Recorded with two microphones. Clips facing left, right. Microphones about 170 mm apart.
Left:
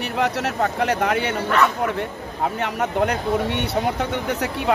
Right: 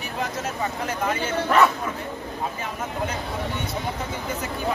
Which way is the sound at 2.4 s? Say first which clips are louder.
Left 9 dB; 70° left (ahead or behind).